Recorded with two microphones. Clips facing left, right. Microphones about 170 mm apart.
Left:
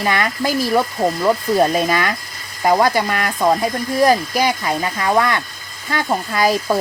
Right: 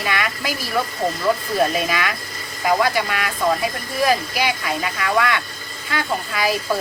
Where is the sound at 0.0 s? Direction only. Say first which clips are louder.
Left 5 dB; 45° left (ahead or behind).